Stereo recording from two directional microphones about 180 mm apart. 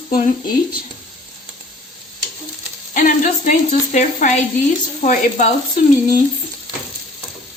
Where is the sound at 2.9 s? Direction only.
45° left (ahead or behind).